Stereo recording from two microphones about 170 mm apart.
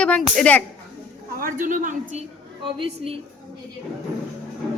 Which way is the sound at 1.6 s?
50° right (ahead or behind).